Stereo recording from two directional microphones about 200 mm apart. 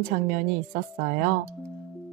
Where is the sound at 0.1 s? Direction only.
45° right (ahead or behind).